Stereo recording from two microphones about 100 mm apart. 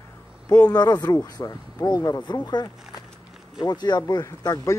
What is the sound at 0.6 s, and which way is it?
Speech, 40° left (ahead or behind).